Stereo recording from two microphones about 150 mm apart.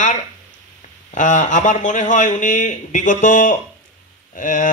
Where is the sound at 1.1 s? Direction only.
55° left (ahead or behind).